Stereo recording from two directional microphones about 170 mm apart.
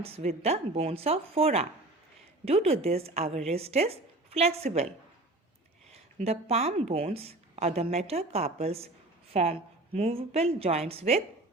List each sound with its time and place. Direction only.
0.0 s speech: 35° right (ahead or behind)
5.9 s speech: 35° right (ahead or behind)